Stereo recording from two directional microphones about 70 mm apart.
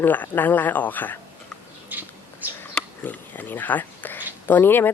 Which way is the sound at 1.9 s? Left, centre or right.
Right.